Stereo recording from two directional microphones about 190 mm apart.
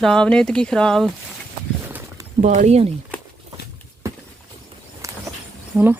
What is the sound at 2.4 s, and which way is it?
Speech, 40° right (ahead or behind).